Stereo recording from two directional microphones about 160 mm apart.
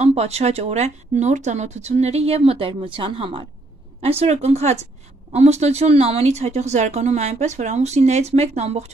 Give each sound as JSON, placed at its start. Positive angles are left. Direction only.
{"t": 0.0, "sound": "speech", "side_deg": -40}